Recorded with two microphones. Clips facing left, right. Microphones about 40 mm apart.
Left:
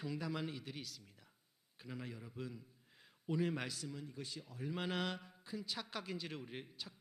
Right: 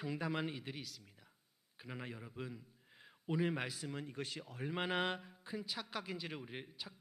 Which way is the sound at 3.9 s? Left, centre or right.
Right.